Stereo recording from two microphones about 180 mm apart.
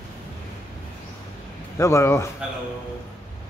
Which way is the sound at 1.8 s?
15° left (ahead or behind).